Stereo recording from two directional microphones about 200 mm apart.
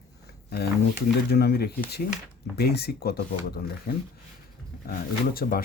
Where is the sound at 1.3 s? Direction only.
50° left (ahead or behind).